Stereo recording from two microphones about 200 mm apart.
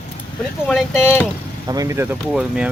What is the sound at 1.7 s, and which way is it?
Speech, 15° right (ahead or behind).